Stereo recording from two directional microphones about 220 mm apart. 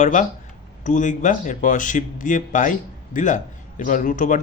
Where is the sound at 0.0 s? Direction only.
35° left (ahead or behind).